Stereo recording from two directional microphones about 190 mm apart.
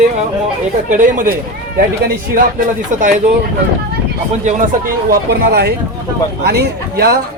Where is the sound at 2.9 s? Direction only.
40° right (ahead or behind).